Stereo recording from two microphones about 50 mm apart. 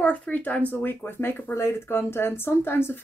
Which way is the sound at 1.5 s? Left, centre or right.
Left.